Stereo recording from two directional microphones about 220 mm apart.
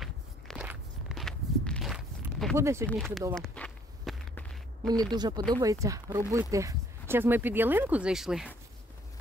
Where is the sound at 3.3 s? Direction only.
5° left (ahead or behind).